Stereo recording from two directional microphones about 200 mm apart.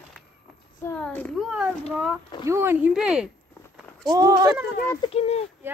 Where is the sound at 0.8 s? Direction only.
10° left (ahead or behind).